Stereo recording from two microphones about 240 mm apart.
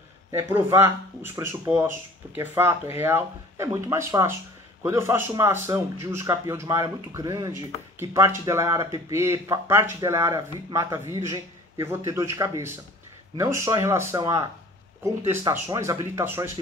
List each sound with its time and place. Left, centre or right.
0.3 s a man's voice: centre